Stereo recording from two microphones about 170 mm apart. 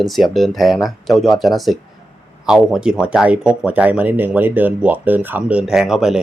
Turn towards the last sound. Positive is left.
turn(degrees=-5)  # may be behind; listen again after turning